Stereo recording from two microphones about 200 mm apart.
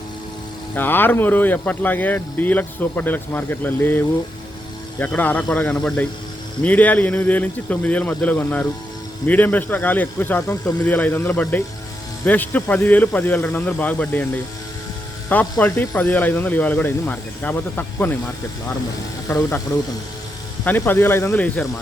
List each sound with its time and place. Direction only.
0.8 s speech: 10° left (ahead or behind)
15.3 s speech: 10° left (ahead or behind)
19.3 s speech: 15° left (ahead or behind)
20.7 s speech: 10° left (ahead or behind)